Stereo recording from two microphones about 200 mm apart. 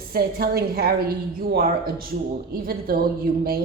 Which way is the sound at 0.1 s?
50° right (ahead or behind).